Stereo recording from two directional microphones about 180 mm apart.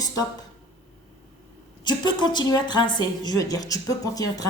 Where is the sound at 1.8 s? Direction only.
25° left (ahead or behind).